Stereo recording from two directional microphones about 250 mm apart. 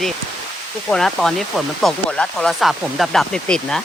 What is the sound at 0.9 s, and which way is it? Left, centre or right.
Speech, centre.